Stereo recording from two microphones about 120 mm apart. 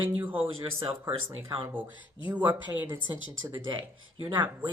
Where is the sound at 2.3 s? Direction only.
15° right (ahead or behind).